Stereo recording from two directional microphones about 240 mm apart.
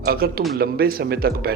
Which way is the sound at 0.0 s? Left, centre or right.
Right.